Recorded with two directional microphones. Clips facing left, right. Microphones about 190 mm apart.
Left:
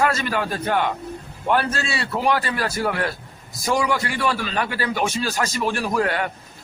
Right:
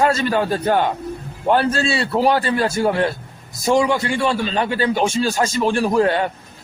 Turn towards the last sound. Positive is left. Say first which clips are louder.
# right 6 dB
turn(degrees=-25)  # may be behind; listen again after turning